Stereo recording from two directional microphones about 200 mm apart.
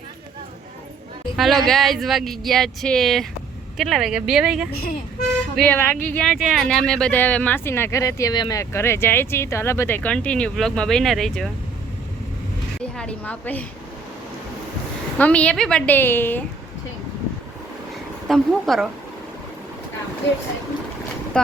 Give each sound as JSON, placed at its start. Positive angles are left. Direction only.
{"t": 1.4, "sound": "speech", "side_deg": 0}
{"t": 5.5, "sound": "speech", "side_deg": 10}
{"t": 12.8, "sound": "a woman's voice", "side_deg": 5}
{"t": 15.2, "sound": "speech", "side_deg": 5}
{"t": 18.3, "sound": "speech", "side_deg": 0}
{"t": 21.3, "sound": "speech", "side_deg": 5}